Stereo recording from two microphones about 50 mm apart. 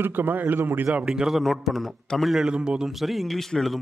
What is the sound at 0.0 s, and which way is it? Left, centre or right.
Speech, right.